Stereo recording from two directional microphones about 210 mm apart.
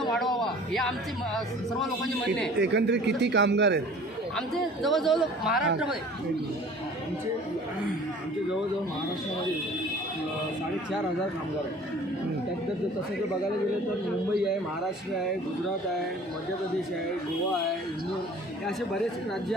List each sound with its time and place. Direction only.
0.0 s a sound: centre (ahead or behind)
2.6 s speech: 55° right (ahead or behind)
4.4 s a man's voice: centre (ahead or behind)